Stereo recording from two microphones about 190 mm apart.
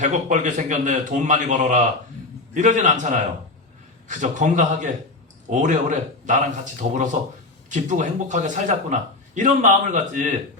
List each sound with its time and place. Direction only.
0.0 s a man's voice: 40° right (ahead or behind)